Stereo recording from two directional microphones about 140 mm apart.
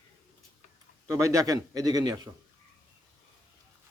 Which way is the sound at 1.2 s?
25° right (ahead or behind).